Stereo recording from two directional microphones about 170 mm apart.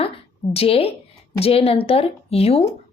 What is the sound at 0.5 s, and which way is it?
A woman's voice, 35° left (ahead or behind).